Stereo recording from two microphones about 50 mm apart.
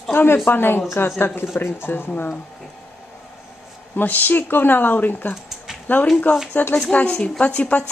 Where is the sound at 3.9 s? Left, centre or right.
Left.